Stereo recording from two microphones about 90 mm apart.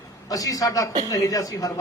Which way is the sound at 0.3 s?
40° left (ahead or behind).